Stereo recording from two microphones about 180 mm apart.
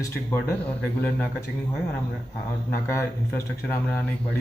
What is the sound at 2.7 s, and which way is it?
Speech, 15° left (ahead or behind).